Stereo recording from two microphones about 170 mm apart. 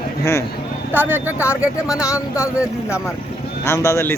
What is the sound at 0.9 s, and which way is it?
Speech, 10° right (ahead or behind).